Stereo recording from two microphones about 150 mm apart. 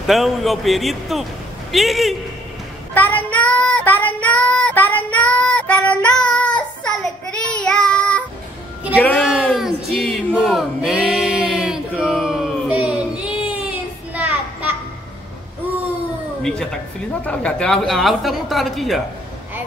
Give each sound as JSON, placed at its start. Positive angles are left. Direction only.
{"t": 0.0, "sound": "speech", "side_deg": 0}
{"t": 2.9, "sound": "child singing", "side_deg": 10}
{"t": 8.9, "sound": "speech", "side_deg": 10}
{"t": 9.2, "sound": "a sound", "side_deg": 0}
{"t": 13.7, "sound": "child singing", "side_deg": -10}
{"t": 17.2, "sound": "speech", "side_deg": 10}